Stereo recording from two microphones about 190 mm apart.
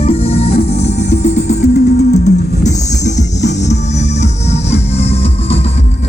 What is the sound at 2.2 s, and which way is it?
Music, 40° left (ahead or behind).